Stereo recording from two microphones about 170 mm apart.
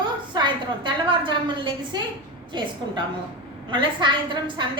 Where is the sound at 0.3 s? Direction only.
25° right (ahead or behind).